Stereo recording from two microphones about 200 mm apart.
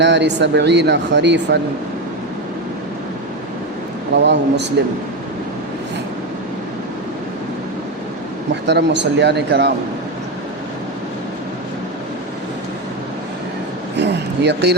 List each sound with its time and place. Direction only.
0.0 s speech: 60° right (ahead or behind)
4.1 s speech: 60° right (ahead or behind)
8.6 s speech: 60° right (ahead or behind)
13.9 s a sound: 60° right (ahead or behind)